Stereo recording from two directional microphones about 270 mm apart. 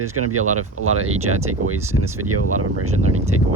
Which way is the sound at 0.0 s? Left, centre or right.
Right.